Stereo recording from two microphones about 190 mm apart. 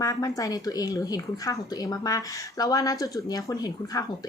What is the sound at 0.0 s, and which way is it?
Speech, 20° left (ahead or behind).